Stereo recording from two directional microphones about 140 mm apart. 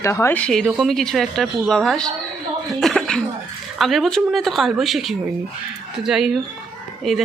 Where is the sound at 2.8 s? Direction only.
5° left (ahead or behind).